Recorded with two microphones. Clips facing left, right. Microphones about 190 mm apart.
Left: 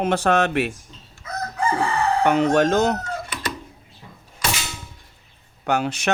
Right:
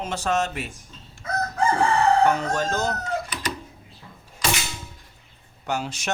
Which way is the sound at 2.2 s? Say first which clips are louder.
Left 4 dB; 70° left (ahead or behind).